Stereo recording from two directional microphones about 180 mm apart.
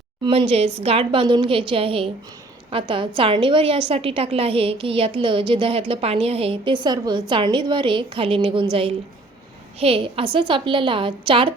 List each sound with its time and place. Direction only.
0.3 s a woman's voice: 30° right (ahead or behind)
9.8 s a woman's voice: 30° right (ahead or behind)